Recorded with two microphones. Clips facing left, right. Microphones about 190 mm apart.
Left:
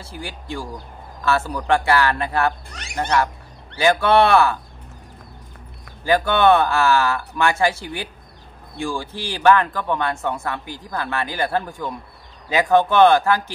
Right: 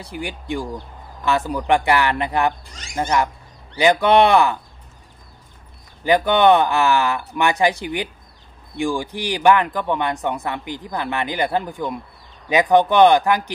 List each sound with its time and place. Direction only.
0.0 s a man's voice: 15° right (ahead or behind)
2.7 s speech: 65° left (ahead or behind)
3.0 s a man's voice: 10° right (ahead or behind)
6.0 s a man's voice: 20° right (ahead or behind)